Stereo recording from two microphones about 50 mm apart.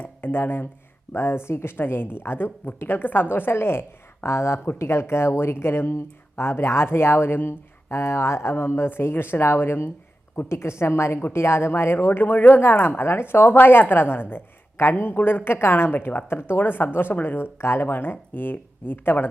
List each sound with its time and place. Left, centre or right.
0.2 s speech: left
10.5 s speech: left
12.2 s speech: left
13.0 s speech: left
13.5 s speech: left